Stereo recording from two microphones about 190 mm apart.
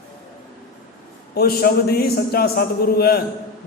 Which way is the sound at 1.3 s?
55° left (ahead or behind).